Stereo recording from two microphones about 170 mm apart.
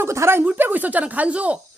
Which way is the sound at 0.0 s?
15° right (ahead or behind).